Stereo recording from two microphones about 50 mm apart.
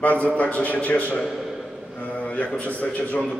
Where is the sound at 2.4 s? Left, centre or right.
Left.